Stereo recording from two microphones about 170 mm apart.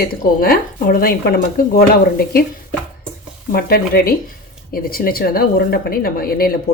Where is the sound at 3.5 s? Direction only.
65° left (ahead or behind).